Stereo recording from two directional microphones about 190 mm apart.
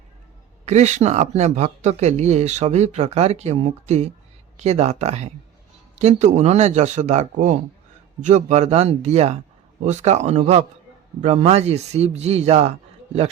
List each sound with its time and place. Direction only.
0.6 s speech: 35° right (ahead or behind)